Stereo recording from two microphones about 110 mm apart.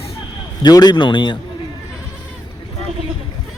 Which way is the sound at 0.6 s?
40° left (ahead or behind).